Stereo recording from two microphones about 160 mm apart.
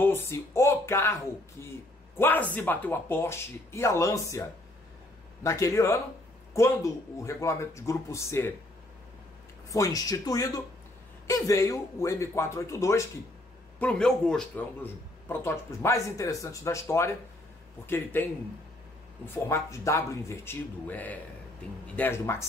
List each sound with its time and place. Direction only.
0.0 s speech: 15° left (ahead or behind)
9.7 s speech: 20° left (ahead or behind)
13.7 s a man's voice: 5° left (ahead or behind)
14.8 s speech: 15° left (ahead or behind)
19.2 s speech: 15° left (ahead or behind)